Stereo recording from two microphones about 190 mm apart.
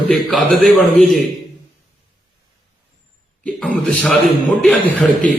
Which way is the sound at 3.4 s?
5° left (ahead or behind).